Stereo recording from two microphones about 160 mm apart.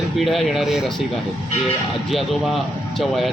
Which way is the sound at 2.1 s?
Centre (ahead or behind).